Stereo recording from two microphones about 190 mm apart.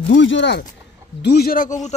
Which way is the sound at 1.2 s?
55° left (ahead or behind).